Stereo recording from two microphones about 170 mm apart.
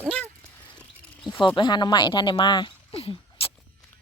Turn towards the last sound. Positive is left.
turn(degrees=35)  # may be behind; listen again after turning